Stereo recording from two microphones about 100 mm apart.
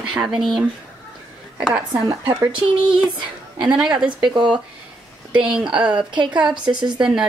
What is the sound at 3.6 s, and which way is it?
Speech, 10° right (ahead or behind).